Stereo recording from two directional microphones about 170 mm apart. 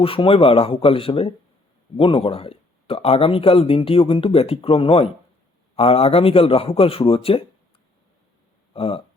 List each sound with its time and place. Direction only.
0.0 s speech: 30° left (ahead or behind)
8.7 s speech: 35° left (ahead or behind)